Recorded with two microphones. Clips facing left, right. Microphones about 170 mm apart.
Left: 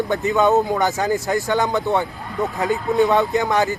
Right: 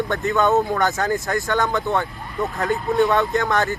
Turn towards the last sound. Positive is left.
turn(degrees=15)  # may be behind; listen again after turning